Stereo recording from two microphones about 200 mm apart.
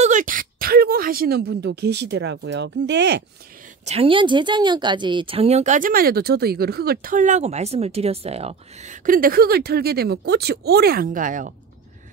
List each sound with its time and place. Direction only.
0.0 s speech: 40° right (ahead or behind); by 3.3 s 60° right (ahead or behind)
3.8 s speech: 30° right (ahead or behind)